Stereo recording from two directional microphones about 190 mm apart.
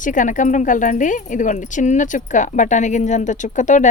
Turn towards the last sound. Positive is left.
turn(degrees=40)  # may be behind; listen again after turning